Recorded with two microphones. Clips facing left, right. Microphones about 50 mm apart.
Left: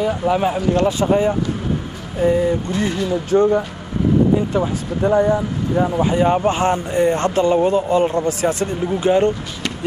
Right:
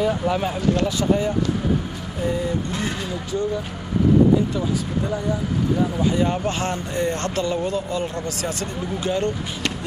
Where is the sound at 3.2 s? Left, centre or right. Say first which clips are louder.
Left 10 dB; left.